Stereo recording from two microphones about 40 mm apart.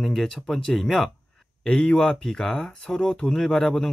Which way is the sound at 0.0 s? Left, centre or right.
Centre.